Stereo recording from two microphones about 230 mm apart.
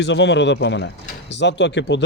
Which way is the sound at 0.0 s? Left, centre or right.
Left.